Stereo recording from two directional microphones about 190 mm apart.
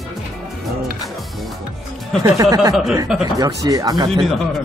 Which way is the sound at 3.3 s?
20° right (ahead or behind).